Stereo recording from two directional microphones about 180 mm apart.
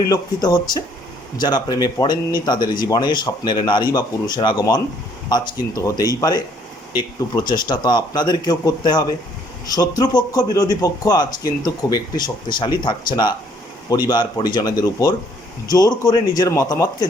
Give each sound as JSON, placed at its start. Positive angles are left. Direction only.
{"t": 0.1, "sound": "speech", "side_deg": 20}